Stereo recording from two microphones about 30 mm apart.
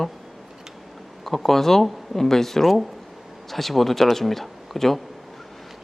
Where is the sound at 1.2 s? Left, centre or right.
Centre.